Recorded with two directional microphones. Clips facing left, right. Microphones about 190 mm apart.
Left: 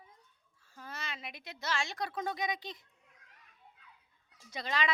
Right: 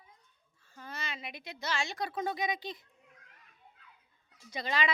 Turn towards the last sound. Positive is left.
turn(degrees=-5)  # may be behind; listen again after turning